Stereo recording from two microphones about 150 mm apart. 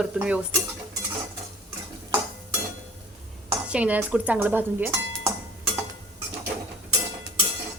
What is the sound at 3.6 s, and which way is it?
Speech, 10° right (ahead or behind).